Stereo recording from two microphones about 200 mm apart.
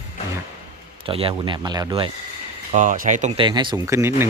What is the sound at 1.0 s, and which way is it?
Speech, 30° right (ahead or behind).